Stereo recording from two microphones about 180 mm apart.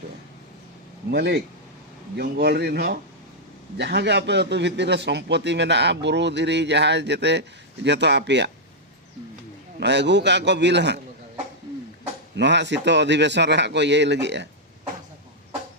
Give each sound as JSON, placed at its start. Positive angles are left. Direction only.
{"t": 1.1, "sound": "a man's voice", "side_deg": -65}
{"t": 9.8, "sound": "a man's voice", "side_deg": -75}
{"t": 12.4, "sound": "a man's voice", "side_deg": -75}